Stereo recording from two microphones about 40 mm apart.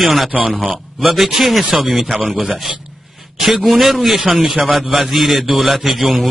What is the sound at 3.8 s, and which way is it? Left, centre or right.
A man's voice, centre.